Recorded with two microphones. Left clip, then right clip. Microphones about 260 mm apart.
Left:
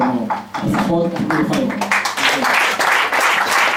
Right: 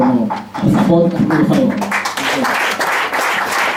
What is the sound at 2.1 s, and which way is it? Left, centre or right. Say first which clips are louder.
Applause: left 1 dB; centre.